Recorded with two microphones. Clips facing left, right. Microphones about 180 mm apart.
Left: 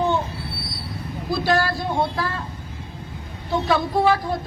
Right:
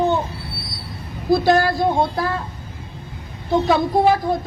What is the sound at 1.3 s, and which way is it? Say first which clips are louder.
Speech: right 6 dB; 50° right (ahead or behind).